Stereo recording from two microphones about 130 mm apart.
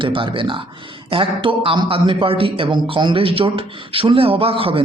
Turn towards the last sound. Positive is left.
turn(degrees=-45)  # may be behind; listen again after turning